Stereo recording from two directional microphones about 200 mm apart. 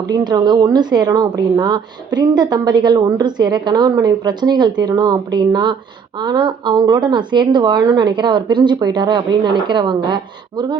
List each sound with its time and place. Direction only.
0.1 s a woman's voice: 20° right (ahead or behind)